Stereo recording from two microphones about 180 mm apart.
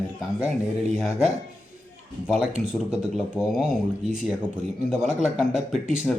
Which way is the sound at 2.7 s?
5° right (ahead or behind).